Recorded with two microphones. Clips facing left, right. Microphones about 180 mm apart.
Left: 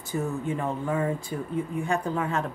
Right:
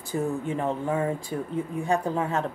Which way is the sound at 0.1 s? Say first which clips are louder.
Right 1 dB; 25° right (ahead or behind).